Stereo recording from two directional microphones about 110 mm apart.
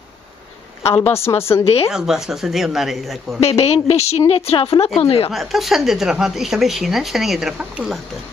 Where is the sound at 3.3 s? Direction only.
70° left (ahead or behind).